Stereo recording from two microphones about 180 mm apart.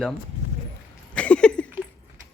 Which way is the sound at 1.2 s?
5° left (ahead or behind).